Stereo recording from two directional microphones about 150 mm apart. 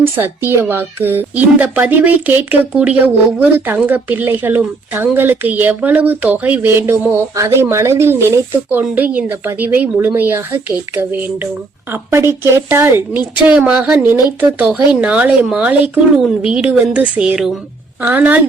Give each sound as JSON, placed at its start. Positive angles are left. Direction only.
{"t": 0.0, "sound": "speech", "side_deg": -15}